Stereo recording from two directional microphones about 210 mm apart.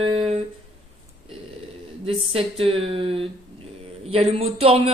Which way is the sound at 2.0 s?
25° right (ahead or behind).